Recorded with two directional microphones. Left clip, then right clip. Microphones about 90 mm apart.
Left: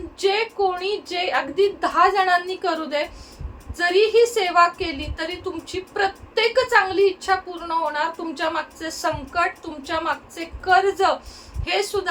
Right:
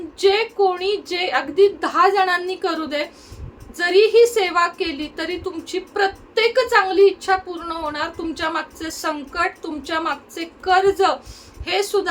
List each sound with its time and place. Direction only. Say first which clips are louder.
0.2 s a woman's voice: right 4 dB; 35° right (ahead or behind)